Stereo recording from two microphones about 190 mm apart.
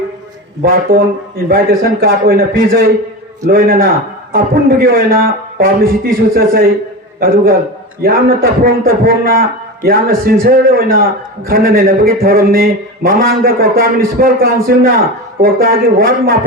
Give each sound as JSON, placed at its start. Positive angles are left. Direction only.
{"t": 0.6, "sound": "a man's voice", "side_deg": -50}